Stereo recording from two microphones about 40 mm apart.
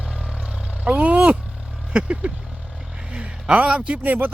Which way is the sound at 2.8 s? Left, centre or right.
Centre.